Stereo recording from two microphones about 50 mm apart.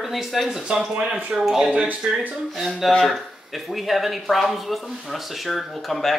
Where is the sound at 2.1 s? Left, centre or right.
Centre.